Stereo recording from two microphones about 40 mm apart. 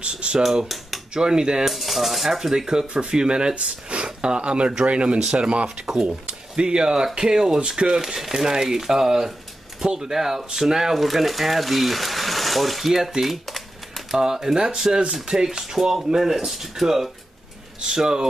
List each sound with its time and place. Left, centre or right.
0.0 s cutlery: right
0.4 s cutlery: centre
1.1 s speech: centre
1.6 s speech: centre
14.1 s speech: centre
17.8 s speech: centre